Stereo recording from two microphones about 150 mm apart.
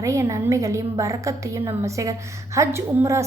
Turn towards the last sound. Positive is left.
turn(degrees=-15)  # may be behind; listen again after turning